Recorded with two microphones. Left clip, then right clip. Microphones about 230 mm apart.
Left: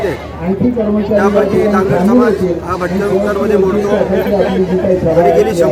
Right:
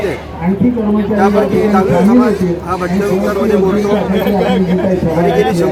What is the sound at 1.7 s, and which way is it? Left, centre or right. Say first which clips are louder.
Speech: even; centre.